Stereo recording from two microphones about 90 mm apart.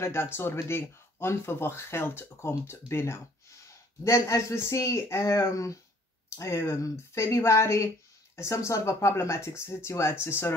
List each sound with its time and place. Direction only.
0.0 s speech: 30° left (ahead or behind)